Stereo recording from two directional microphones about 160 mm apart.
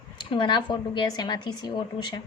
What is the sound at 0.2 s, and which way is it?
A woman's voice, 30° left (ahead or behind).